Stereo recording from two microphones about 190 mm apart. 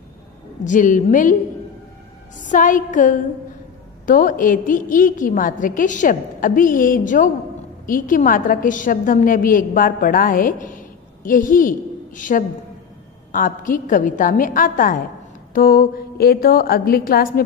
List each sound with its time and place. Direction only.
0.7 s a woman's voice: 45° left (ahead or behind)
2.4 s a woman's voice: 45° left (ahead or behind)